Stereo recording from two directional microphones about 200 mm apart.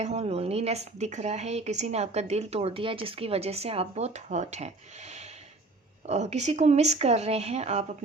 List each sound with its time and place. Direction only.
0.0 s speech: 35° right (ahead or behind)